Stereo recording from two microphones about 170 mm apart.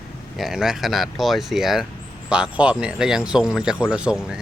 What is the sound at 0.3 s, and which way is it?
Speech, 5° right (ahead or behind).